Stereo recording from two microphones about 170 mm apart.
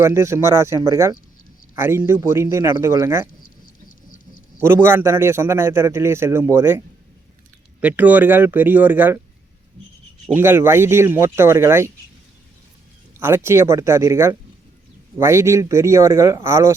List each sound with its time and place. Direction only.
0.0 s a man's voice: 15° right (ahead or behind)
3.4 s a sound: 55° left (ahead or behind)
4.6 s a man's voice: 15° right (ahead or behind)
10.3 s a man's voice: 15° right (ahead or behind)
13.1 s a man's voice: 15° right (ahead or behind)